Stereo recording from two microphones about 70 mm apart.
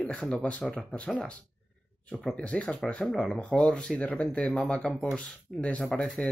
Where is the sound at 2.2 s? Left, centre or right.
Centre.